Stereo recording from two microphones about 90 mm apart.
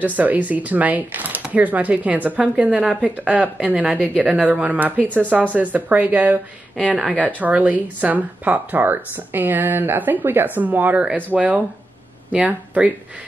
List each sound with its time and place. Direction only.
0.0 s speech: 20° right (ahead or behind)